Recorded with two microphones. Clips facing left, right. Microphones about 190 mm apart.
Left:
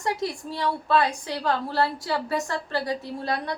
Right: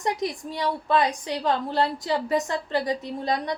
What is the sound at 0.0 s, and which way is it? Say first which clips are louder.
A woman's voice: right 1 dB; 15° right (ahead or behind).